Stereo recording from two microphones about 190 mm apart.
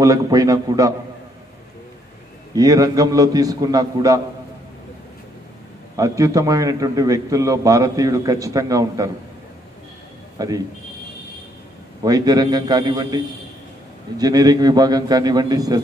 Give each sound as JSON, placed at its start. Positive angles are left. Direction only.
{"t": 0.0, "sound": "a man's voice", "side_deg": -20}
{"t": 2.5, "sound": "a man's voice", "side_deg": -20}
{"t": 5.9, "sound": "a man's voice", "side_deg": -15}
{"t": 10.4, "sound": "a man's voice", "side_deg": -20}
{"t": 12.0, "sound": "a man's voice", "side_deg": -20}